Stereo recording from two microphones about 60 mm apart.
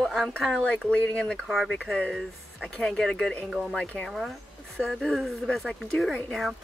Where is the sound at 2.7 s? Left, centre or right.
Centre.